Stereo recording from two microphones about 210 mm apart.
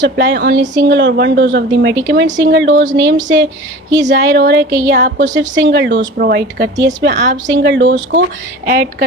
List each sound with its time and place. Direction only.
0.0 s a woman's voice: 55° right (ahead or behind)
8.6 s speech: 45° right (ahead or behind)